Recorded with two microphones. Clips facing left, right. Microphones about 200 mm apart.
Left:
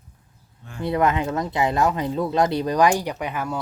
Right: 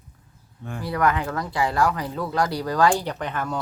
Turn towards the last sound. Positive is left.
turn(degrees=10)  # may be behind; listen again after turning